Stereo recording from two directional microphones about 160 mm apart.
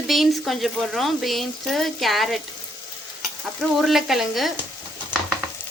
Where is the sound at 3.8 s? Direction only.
Centre (ahead or behind).